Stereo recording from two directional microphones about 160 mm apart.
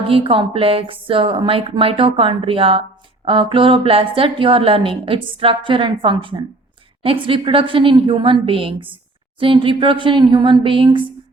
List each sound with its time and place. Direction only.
0.1 s a woman's voice: 35° right (ahead or behind)